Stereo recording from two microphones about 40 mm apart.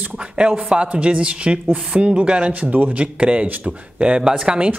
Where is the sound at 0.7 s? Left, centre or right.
Right.